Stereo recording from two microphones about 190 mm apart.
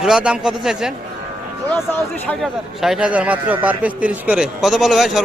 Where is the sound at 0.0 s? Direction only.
5° right (ahead or behind).